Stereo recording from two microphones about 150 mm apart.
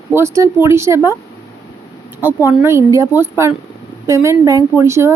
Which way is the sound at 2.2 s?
15° right (ahead or behind).